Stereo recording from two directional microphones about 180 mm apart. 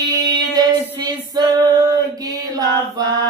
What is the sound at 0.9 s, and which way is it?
Music, 25° right (ahead or behind).